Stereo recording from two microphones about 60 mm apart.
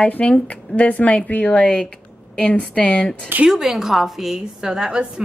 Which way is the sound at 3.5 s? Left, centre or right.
Centre.